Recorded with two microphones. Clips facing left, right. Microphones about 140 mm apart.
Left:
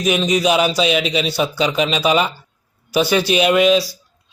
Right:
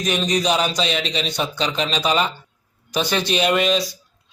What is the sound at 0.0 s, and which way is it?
A man's voice, 5° left (ahead or behind).